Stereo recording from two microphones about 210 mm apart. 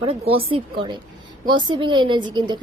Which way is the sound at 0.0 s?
25° right (ahead or behind).